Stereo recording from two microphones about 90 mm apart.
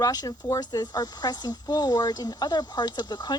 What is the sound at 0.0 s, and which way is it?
Speech, 45° left (ahead or behind).